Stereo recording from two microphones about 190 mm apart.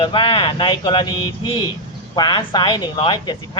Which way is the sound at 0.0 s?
25° left (ahead or behind).